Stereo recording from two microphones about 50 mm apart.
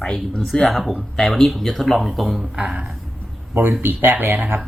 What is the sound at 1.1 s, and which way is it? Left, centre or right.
Speech, centre.